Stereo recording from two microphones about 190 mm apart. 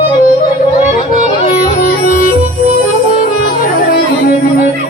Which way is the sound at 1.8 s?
50° left (ahead or behind).